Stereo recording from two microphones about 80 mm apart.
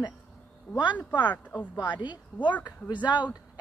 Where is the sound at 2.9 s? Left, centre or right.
Left.